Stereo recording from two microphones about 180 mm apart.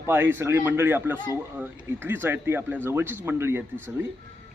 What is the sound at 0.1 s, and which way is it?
Speech, 10° right (ahead or behind).